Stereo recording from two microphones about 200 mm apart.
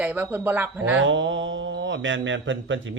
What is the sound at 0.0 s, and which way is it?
Speech, 10° right (ahead or behind).